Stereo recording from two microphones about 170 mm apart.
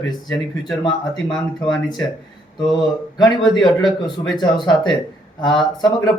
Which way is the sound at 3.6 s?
25° left (ahead or behind).